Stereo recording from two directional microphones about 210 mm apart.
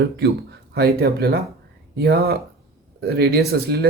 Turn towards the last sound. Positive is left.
turn(degrees=-50)  # may be behind; listen again after turning